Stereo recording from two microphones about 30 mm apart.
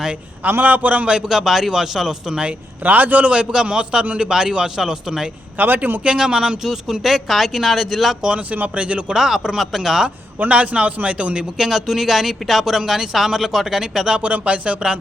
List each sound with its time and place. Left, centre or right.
0.4 s a man's voice: right
1.3 s speech: centre
2.8 s a man's voice: right
3.2 s a man's voice: right
3.5 s a man's voice: right
5.5 s speech: right
6.1 s a man's voice: right; by 8.1 s centre
8.7 s a man's voice: right
9.0 s speech: centre
10.5 s a man's voice: right
11.5 s speech: centre
14.2 s a man's voice: right